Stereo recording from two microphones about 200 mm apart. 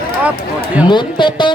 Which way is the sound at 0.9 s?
25° left (ahead or behind).